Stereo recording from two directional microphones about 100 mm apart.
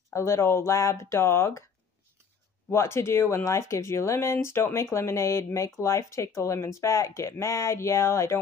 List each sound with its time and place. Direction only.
0.1 s speech: 30° left (ahead or behind)
2.7 s speech: 30° left (ahead or behind)